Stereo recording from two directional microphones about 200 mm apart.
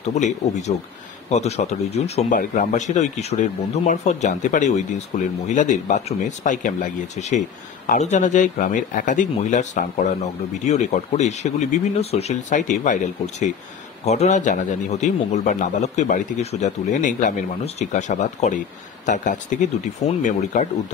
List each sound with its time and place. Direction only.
0.1 s speech: 35° left (ahead or behind)